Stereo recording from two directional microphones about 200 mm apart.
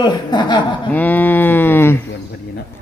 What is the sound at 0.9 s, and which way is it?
Speech, 10° left (ahead or behind).